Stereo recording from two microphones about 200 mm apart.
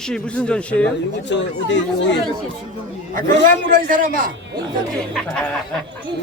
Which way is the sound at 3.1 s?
45° right (ahead or behind).